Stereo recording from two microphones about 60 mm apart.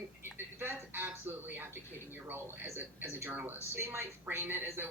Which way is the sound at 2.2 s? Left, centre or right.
Right.